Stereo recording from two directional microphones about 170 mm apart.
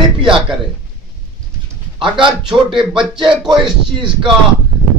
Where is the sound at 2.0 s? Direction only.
30° right (ahead or behind).